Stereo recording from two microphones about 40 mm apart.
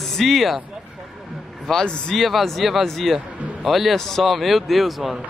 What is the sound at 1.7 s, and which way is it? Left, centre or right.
Speech, centre.